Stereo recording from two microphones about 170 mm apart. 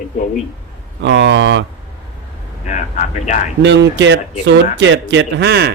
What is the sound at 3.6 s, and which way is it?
Speech, 90° right.